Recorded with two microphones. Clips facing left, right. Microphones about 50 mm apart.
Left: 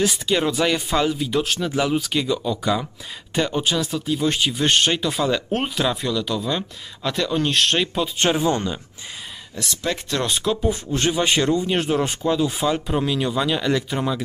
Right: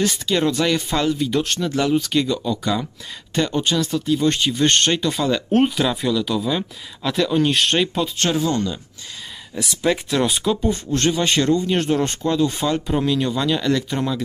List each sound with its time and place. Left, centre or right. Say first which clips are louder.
0.0 s speech: right 1 dB; centre
8.2 s speech: left 2 dB; left
9.8 s speech: right 5 dB; centre